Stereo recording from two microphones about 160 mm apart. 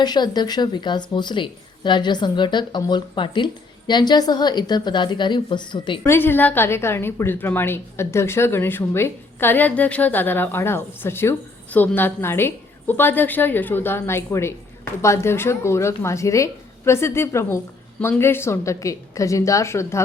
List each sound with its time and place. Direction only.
0.0 s a woman's voice: 25° left (ahead or behind)
6.1 s a woman's voice: 15° left (ahead or behind)